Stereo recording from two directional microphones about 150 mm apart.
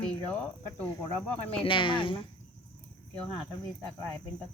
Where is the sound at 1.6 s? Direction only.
35° left (ahead or behind).